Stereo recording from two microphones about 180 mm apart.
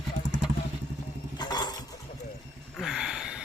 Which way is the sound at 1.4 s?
20° left (ahead or behind).